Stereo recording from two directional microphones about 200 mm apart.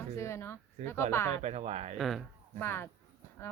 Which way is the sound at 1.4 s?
35° right (ahead or behind).